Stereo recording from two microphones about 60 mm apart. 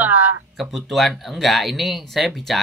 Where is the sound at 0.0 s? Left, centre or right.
Right.